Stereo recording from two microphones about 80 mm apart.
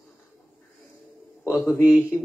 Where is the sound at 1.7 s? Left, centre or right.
Centre.